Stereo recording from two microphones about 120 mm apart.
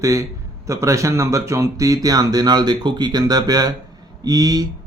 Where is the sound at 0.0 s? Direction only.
25° right (ahead or behind).